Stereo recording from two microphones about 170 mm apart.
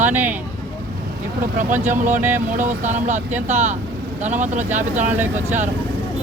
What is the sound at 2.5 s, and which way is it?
Speech, 45° right (ahead or behind).